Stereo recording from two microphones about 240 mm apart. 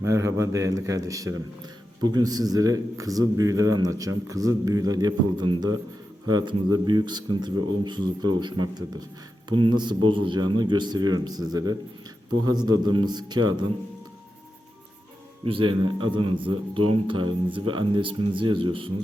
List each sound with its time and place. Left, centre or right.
0.0 s a man's voice: centre
15.4 s speech: right